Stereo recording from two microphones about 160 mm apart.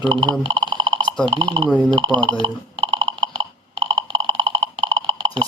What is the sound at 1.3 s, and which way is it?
Speech, 30° right (ahead or behind).